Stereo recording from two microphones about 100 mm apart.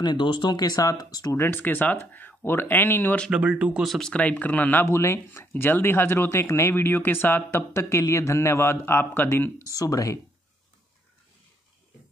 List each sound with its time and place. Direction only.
0.0 s speech: 50° left (ahead or behind)
1.3 s speech: 20° left (ahead or behind)
3.3 s speech: 10° right (ahead or behind)
3.8 s speech: centre (ahead or behind)
4.1 s speech: 15° left (ahead or behind)
9.7 s speech: 35° left (ahead or behind)